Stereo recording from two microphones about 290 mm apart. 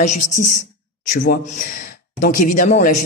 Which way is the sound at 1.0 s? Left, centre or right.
Left.